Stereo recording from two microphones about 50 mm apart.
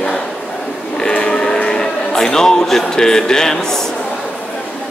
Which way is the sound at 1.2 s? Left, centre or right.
Centre.